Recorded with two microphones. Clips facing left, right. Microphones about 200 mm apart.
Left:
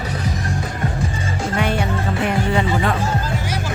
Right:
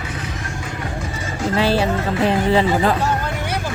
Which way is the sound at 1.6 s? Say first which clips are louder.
Right 4 dB; 30° right (ahead or behind).